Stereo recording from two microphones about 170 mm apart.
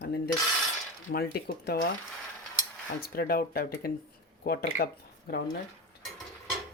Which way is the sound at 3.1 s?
65° left (ahead or behind).